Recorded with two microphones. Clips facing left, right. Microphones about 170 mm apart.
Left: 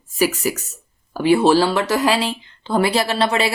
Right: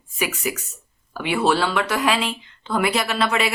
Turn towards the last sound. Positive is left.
turn(degrees=30)  # may be behind; listen again after turning